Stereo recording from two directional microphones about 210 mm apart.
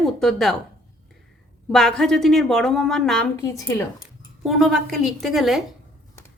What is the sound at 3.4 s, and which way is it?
Speech, 15° left (ahead or behind).